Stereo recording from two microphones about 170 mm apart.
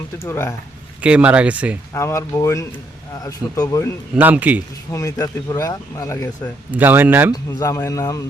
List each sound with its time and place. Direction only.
0.2 s speech: 15° left (ahead or behind)
1.0 s speech: 5° right (ahead or behind)
1.9 s speech: 15° left (ahead or behind)
4.1 s speech: 10° right (ahead or behind)
4.9 s speech: 20° left (ahead or behind)
6.7 s speech: 10° right (ahead or behind)
7.6 s speech: 20° left (ahead or behind)